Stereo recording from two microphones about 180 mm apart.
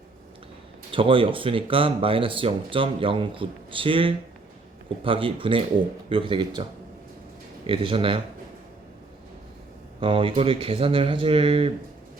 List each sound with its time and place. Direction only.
0.9 s speech: 30° right (ahead or behind)
7.7 s speech: 30° right (ahead or behind)
10.0 s speech: 30° right (ahead or behind)